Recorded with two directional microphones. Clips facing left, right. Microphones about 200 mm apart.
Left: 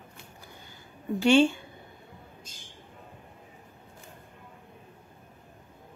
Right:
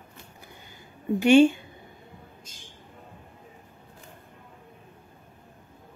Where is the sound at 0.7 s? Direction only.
15° right (ahead or behind).